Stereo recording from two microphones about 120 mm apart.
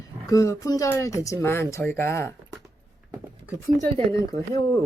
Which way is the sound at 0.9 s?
25° left (ahead or behind).